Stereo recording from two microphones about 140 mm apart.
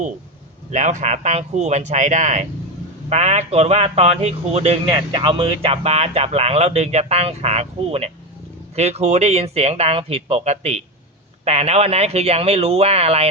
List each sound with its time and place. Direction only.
0.7 s speech: 60° right (ahead or behind)